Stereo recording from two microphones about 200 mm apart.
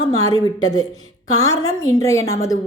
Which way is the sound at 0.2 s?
20° left (ahead or behind).